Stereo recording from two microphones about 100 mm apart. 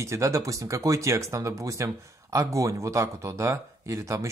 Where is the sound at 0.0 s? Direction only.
30° right (ahead or behind).